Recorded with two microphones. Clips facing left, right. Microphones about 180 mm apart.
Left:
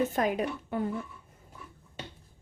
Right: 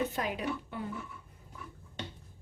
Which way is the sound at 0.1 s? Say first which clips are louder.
Left 6 dB; 50° left (ahead or behind).